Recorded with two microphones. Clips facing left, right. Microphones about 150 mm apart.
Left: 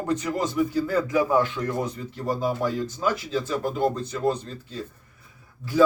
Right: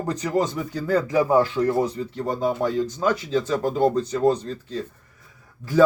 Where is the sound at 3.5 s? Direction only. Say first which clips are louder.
Right 4 dB; 35° right (ahead or behind).